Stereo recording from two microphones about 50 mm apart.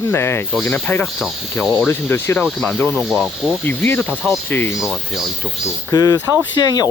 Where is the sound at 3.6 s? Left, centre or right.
Left.